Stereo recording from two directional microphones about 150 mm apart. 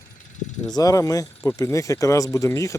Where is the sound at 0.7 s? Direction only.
25° left (ahead or behind).